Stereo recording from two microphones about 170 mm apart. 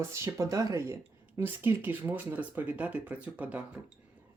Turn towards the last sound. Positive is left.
turn(degrees=-10)  # may be behind; listen again after turning